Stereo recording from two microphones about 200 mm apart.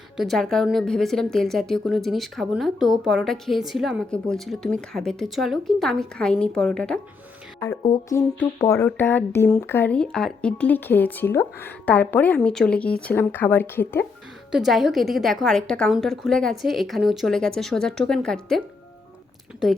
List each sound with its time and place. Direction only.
0.2 s a woman's voice: centre (ahead or behind)
7.8 s music: 20° left (ahead or behind)
8.4 s speech: 15° left (ahead or behind)
14.5 s a woman's voice: centre (ahead or behind)